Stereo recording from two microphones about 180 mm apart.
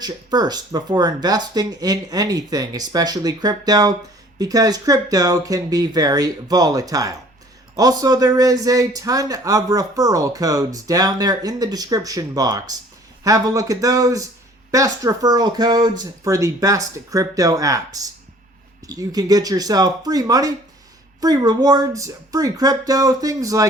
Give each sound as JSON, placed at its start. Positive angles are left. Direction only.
{"t": 0.0, "sound": "speech", "side_deg": -20}